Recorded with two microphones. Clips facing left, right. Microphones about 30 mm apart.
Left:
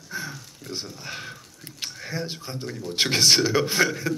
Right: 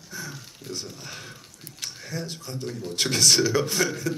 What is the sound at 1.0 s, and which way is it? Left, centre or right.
A man's voice, left.